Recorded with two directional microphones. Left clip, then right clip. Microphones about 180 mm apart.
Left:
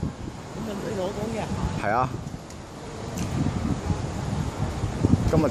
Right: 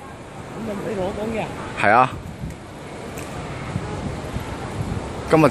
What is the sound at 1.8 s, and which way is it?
Speech, 15° right (ahead or behind).